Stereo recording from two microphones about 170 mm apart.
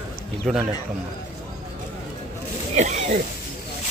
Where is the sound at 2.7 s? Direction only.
45° right (ahead or behind).